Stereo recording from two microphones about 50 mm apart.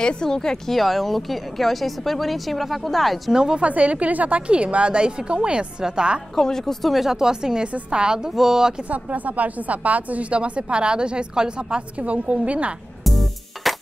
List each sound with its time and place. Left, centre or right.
0.0 s speech: centre
0.7 s a woman's voice: centre
3.3 s a woman's voice: centre
3.6 s a woman's voice: right
6.3 s a woman's voice: centre
8.8 s a woman's voice: right
12.0 s a woman's voice: right
13.0 s music: centre